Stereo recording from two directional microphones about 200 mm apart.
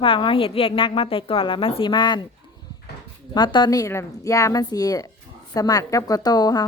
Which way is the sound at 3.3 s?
20° left (ahead or behind).